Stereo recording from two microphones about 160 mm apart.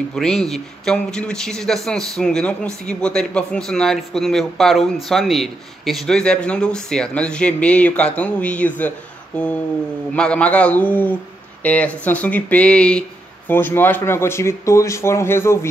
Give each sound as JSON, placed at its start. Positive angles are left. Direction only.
{"t": 0.1, "sound": "speech", "side_deg": 0}